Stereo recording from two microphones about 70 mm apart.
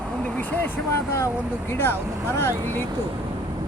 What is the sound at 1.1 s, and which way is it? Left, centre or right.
Speech, left.